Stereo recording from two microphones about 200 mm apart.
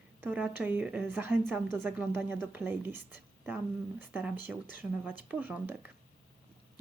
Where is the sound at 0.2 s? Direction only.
5° right (ahead or behind).